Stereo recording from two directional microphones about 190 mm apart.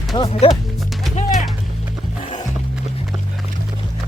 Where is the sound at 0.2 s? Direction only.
30° left (ahead or behind).